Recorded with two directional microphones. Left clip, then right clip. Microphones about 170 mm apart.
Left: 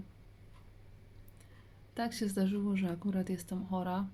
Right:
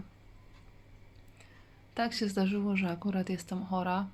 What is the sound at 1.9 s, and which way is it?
Speech, 15° left (ahead or behind).